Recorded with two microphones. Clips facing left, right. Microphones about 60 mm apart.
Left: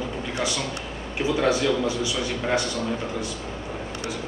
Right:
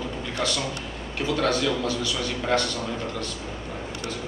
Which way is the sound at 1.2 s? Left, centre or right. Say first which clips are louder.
Left 2 dB; centre.